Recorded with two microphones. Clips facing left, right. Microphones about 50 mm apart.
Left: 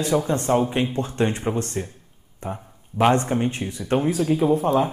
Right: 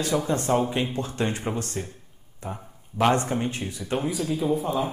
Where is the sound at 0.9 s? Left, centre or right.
Left.